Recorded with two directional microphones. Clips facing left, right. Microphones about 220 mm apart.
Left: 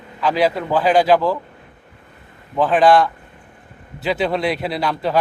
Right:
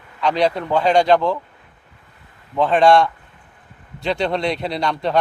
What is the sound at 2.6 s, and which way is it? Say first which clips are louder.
Speech: even; centre (ahead or behind).